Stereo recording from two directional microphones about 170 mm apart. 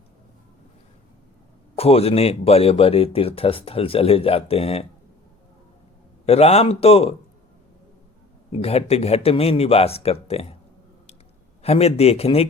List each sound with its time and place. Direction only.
1.7 s speech: 35° left (ahead or behind)
6.2 s speech: 35° left (ahead or behind)
8.5 s speech: 35° left (ahead or behind)
11.6 s speech: 35° left (ahead or behind)